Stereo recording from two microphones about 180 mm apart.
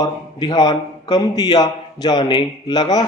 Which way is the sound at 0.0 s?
25° left (ahead or behind).